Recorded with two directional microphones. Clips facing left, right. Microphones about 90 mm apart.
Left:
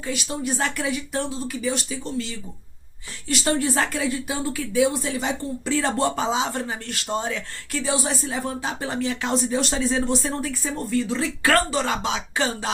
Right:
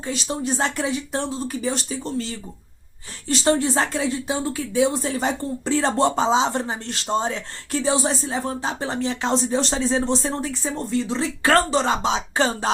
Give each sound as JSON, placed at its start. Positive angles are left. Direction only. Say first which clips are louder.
{"t": 0.0, "sound": "speech", "louder": "right 1 dB", "side_deg": -30}
{"t": 5.1, "sound": "speech", "louder": "right 2 dB", "side_deg": -40}